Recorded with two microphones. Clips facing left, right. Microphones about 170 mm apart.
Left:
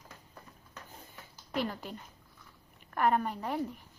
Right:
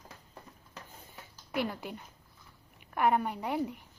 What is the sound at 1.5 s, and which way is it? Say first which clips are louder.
A woman's voice: right 1 dB; 10° right (ahead or behind).